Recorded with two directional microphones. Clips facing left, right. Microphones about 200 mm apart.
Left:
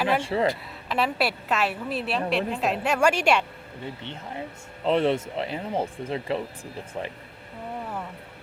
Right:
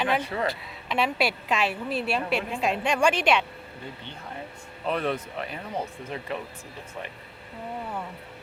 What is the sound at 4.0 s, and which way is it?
Speech, 25° left (ahead or behind).